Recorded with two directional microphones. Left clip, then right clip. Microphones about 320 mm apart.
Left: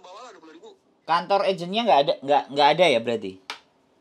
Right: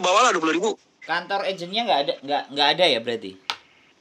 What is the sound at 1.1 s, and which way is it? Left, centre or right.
Speech, left.